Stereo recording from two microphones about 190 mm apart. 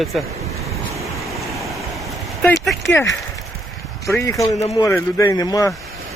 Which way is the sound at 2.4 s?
5° left (ahead or behind).